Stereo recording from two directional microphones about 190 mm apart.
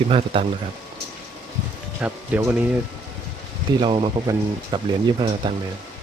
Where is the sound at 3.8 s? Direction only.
25° right (ahead or behind).